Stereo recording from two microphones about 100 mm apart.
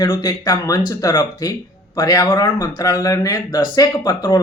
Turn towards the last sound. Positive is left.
turn(degrees=35)  # may be behind; listen again after turning